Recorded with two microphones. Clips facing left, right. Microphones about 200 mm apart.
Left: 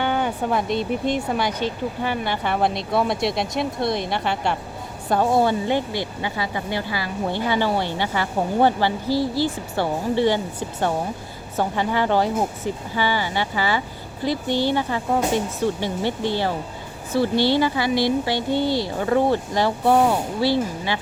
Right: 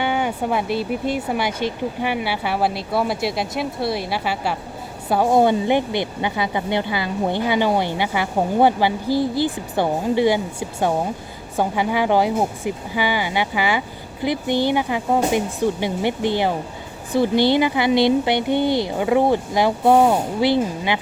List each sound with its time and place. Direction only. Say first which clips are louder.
0.0 s speech: right 1 dB; 10° right (ahead or behind)